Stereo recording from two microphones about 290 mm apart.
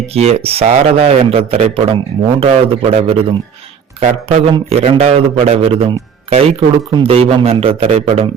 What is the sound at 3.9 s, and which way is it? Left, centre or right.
Speech, right.